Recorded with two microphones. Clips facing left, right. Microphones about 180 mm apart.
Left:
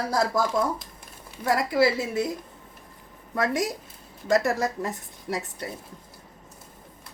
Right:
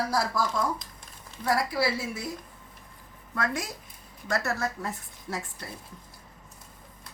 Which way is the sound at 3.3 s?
20° left (ahead or behind).